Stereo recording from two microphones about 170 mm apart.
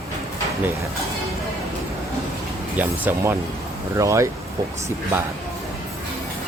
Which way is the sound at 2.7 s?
10° right (ahead or behind).